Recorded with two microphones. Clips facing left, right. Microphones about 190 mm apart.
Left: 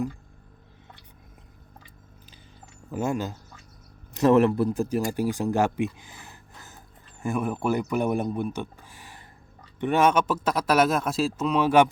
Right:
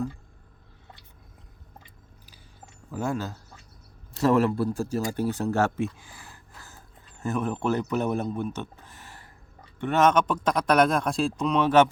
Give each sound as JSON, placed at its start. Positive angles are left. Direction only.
{"t": 2.9, "sound": "speech", "side_deg": 15}
{"t": 8.8, "sound": "a sound", "side_deg": 10}
{"t": 9.7, "sound": "speech", "side_deg": 15}